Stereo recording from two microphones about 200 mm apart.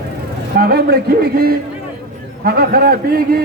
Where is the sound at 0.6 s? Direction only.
50° right (ahead or behind).